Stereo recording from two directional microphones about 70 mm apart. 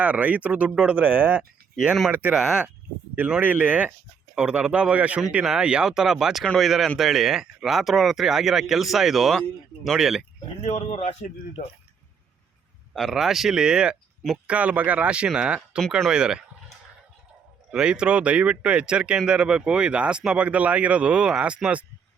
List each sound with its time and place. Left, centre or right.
0.0 s speech: centre
1.7 s speech: centre
2.0 s speech: right
2.3 s speech: centre
3.4 s speech: right; by 10.2 s centre
12.9 s speech: centre
17.7 s speech: centre